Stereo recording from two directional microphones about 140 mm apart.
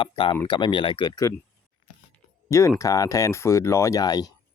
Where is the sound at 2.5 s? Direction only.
20° left (ahead or behind).